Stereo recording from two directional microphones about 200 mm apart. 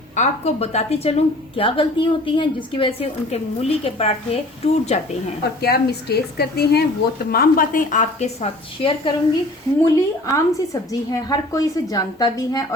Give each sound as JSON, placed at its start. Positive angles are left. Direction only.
{"t": 0.2, "sound": "a woman's voice", "side_deg": 35}
{"t": 5.6, "sound": "a woman's voice", "side_deg": 50}
{"t": 9.8, "sound": "a woman's voice", "side_deg": 15}